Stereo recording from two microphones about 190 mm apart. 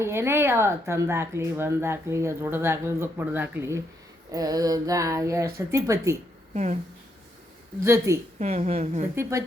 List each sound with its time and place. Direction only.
0.0 s speech: 15° right (ahead or behind)
6.5 s speech: 40° right (ahead or behind)
7.9 s speech: 15° right (ahead or behind)
8.4 s a woman's voice: 35° right (ahead or behind)